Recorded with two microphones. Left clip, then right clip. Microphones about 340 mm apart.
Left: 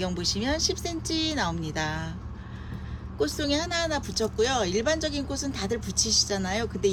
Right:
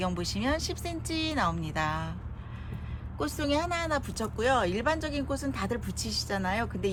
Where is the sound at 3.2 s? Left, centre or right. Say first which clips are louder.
Left 2 dB; centre.